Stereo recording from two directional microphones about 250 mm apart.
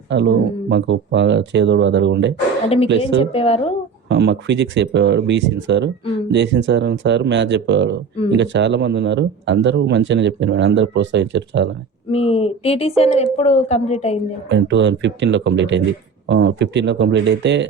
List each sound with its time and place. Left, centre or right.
0.1 s speech: right
2.6 s a woman's voice: left
4.1 s speech: right
12.1 s a woman's voice: left
14.5 s speech: right